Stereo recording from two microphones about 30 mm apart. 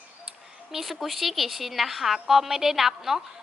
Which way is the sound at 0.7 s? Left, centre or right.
Centre.